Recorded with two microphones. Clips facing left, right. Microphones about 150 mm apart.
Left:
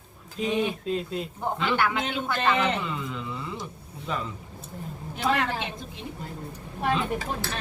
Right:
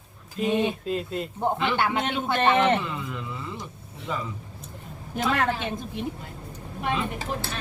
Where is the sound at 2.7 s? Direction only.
Centre (ahead or behind).